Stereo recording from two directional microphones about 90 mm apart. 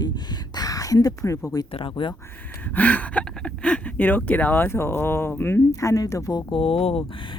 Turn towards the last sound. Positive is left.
turn(degrees=80)